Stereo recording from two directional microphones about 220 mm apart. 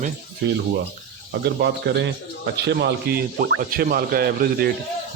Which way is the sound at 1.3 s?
50° right (ahead or behind).